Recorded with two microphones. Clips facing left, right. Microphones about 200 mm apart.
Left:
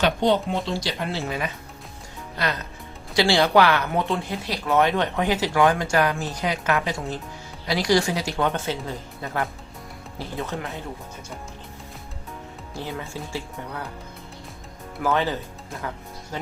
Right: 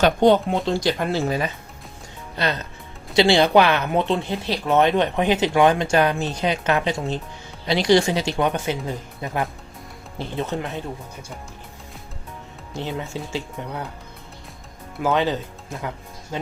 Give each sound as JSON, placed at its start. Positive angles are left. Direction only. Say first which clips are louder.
{"t": 0.0, "sound": "speech", "louder": "right 5 dB", "side_deg": -50}
{"t": 3.2, "sound": "speech", "louder": "right 3 dB", "side_deg": -20}
{"t": 12.7, "sound": "speech", "louder": "right 4 dB", "side_deg": -20}
{"t": 15.0, "sound": "speech", "louder": "right 3 dB", "side_deg": -20}